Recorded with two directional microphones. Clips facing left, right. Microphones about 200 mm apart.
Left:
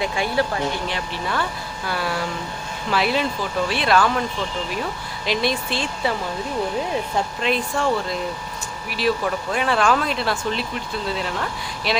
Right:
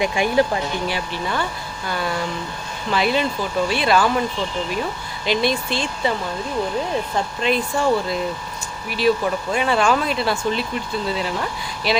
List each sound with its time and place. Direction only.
0.0 s speech: 15° right (ahead or behind)
0.9 s speech: centre (ahead or behind)
7.4 s speech: centre (ahead or behind)